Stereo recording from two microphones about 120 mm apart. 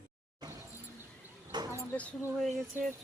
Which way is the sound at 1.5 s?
40° right (ahead or behind).